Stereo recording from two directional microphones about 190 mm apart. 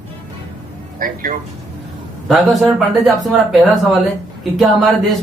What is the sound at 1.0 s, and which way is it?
Speech, 45° right (ahead or behind).